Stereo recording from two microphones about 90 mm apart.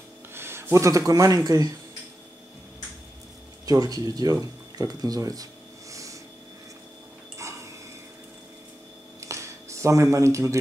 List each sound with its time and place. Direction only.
0.3 s speech: 25° right (ahead or behind)
3.6 s speech: 45° right (ahead or behind)
9.2 s a sound: 35° right (ahead or behind)